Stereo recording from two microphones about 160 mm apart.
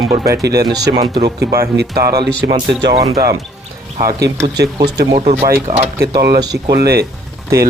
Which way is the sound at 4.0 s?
80° right.